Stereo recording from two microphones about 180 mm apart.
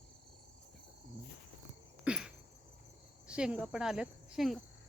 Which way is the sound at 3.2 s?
5° right (ahead or behind).